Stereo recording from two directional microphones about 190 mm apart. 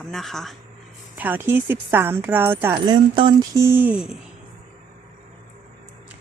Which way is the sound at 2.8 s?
25° right (ahead or behind).